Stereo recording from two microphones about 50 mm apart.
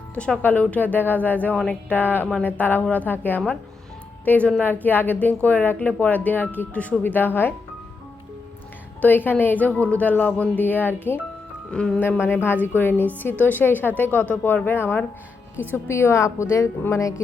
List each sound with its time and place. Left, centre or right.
0.1 s a woman's voice: left
4.6 s a woman's voice: left
9.0 s a woman's voice: left
11.7 s a woman's voice: centre
11.9 s a woman's voice: left
15.7 s a woman's voice: left